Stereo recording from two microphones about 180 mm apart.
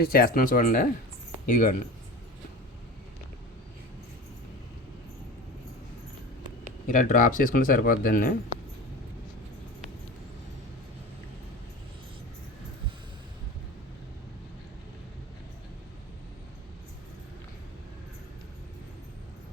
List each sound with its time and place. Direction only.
0.0 s speech: 55° left (ahead or behind)
6.8 s speech: 45° left (ahead or behind)